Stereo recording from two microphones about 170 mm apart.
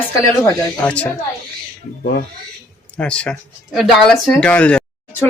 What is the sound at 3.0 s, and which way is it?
Speech, 5° left (ahead or behind).